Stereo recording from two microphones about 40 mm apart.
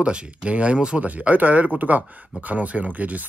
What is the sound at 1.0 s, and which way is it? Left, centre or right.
Speech, right.